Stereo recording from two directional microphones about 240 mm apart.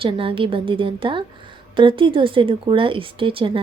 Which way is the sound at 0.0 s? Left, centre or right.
Right.